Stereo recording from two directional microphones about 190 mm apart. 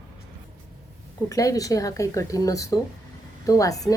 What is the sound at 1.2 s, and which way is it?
Speech, 20° left (ahead or behind).